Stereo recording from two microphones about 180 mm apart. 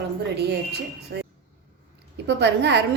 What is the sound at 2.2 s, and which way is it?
Speech, 75° right (ahead or behind).